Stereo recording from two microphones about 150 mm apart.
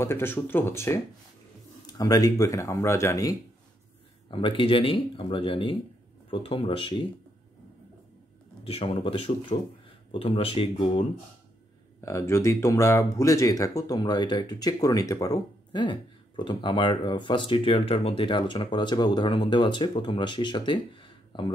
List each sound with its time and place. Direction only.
0.0 s speech: 15° left (ahead or behind)
4.3 s speech: 35° left (ahead or behind)
8.6 s speech: 45° left (ahead or behind)
12.0 s speech: 20° left (ahead or behind)